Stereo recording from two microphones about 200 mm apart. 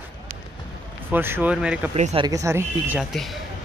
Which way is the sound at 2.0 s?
25° right (ahead or behind).